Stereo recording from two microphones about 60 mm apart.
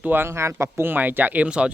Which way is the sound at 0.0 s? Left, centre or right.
Right.